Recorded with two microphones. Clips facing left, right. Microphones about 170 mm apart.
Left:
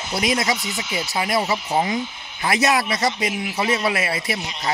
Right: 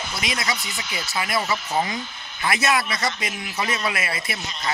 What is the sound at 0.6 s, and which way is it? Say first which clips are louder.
Speech: left 5 dB; 5° left (ahead or behind).